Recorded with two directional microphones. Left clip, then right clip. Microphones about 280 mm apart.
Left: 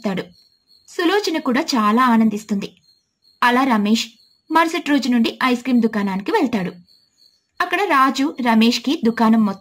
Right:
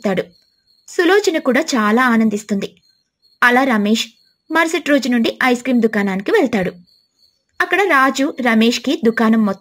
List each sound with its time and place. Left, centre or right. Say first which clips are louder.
0.0 s speech: right 6 dB; centre